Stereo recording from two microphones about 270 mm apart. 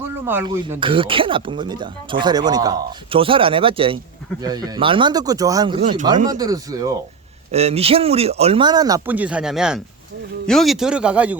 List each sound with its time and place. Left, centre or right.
0.0 s a sound: centre
0.7 s speech: centre
6.2 s speech: centre